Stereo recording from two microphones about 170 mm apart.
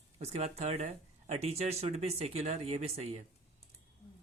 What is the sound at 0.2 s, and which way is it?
Speech, 40° right (ahead or behind).